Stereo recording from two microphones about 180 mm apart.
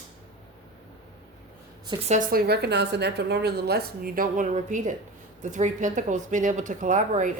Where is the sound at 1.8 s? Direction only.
25° right (ahead or behind).